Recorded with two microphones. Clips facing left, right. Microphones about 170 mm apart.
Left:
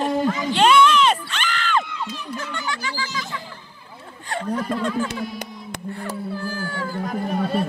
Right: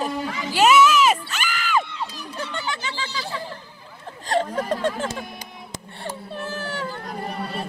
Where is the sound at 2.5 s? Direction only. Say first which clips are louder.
Left 1 dB; 20° right (ahead or behind).